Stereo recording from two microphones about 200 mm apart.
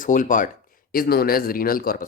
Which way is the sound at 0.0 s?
40° left (ahead or behind).